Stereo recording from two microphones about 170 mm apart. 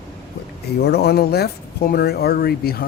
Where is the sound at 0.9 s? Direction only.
70° left (ahead or behind).